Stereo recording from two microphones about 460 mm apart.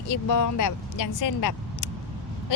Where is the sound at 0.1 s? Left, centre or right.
Left.